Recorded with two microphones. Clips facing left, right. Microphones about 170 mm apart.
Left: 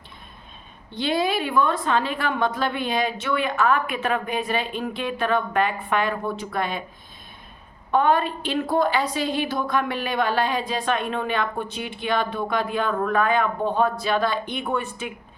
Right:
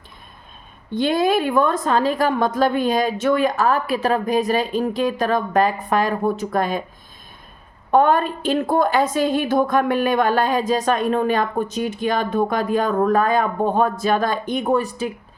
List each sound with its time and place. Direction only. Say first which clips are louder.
0.9 s a woman's voice: right 5 dB; 45° right (ahead or behind)
7.9 s a woman's voice: right 4 dB; 45° right (ahead or behind)